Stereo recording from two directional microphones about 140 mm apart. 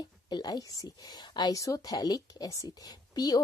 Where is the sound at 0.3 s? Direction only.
30° left (ahead or behind).